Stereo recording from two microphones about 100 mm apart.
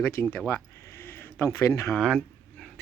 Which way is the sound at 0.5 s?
25° left (ahead or behind).